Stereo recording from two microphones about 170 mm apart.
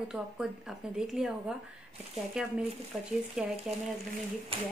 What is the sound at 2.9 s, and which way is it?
Speech, 5° right (ahead or behind).